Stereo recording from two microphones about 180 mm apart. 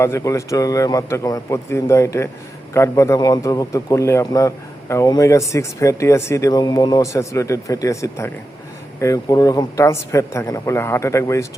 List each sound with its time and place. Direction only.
0.0 s a man's voice: 15° left (ahead or behind)